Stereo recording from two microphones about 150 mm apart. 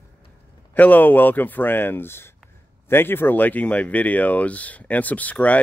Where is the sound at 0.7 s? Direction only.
10° left (ahead or behind).